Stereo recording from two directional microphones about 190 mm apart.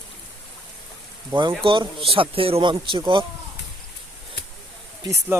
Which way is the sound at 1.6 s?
30° right (ahead or behind).